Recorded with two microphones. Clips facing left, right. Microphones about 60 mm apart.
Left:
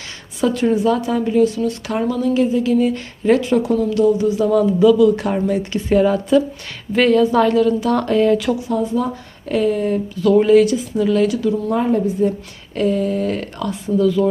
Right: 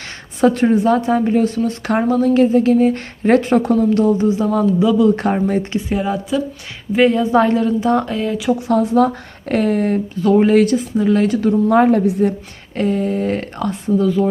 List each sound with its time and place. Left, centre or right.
0.4 s a woman's voice: right
5.9 s a woman's voice: centre
7.2 s a woman's voice: right
8.0 s speech: centre
8.5 s speech: right
10.9 s a woman's voice: right
11.7 s a woman's voice: right
12.7 s a woman's voice: right